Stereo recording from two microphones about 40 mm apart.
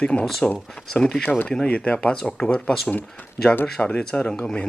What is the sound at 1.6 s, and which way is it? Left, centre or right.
Speech, left.